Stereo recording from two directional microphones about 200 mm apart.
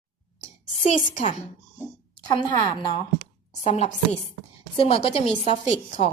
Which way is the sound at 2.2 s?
20° left (ahead or behind).